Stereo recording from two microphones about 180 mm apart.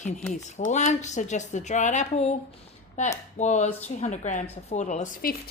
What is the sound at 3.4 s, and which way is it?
A woman's voice, 40° left (ahead or behind).